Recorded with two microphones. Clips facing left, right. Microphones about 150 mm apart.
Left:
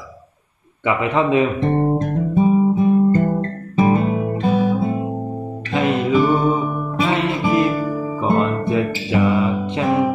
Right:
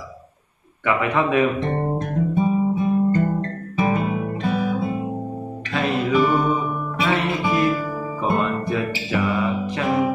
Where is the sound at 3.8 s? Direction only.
30° left (ahead or behind).